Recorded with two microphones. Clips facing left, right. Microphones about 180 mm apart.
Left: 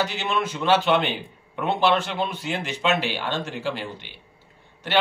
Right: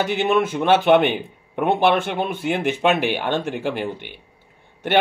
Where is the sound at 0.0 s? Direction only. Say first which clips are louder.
Right 6 dB; 55° right (ahead or behind).